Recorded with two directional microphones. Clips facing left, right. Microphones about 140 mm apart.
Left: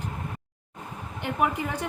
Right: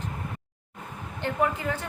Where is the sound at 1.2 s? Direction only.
15° left (ahead or behind).